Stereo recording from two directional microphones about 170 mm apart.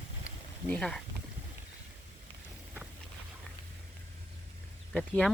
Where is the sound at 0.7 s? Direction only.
5° left (ahead or behind).